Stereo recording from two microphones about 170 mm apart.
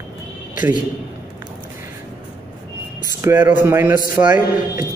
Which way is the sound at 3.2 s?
10° right (ahead or behind).